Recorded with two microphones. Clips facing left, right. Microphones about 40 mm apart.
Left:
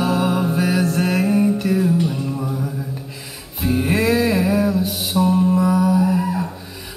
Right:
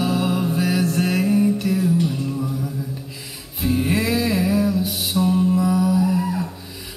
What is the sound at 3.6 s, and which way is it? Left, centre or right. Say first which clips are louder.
Music: left 2 dB; centre.